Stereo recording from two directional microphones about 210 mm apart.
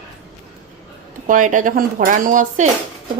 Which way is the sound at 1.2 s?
40° right (ahead or behind).